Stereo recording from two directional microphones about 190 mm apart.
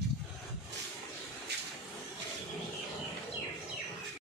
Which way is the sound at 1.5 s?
60° right (ahead or behind).